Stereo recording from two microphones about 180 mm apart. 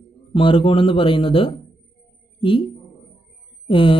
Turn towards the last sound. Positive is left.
turn(degrees=30)  # may be behind; listen again after turning